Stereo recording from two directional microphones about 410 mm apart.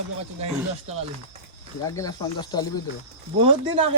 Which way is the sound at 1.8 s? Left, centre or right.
Centre.